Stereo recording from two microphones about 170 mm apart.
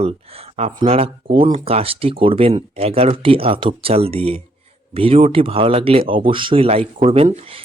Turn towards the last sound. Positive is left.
turn(degrees=-35)  # may be behind; listen again after turning